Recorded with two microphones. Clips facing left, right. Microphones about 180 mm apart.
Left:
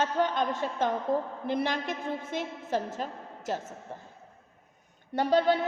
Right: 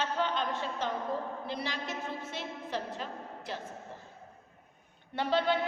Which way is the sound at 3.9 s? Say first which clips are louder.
Left 5 dB; 50° left (ahead or behind).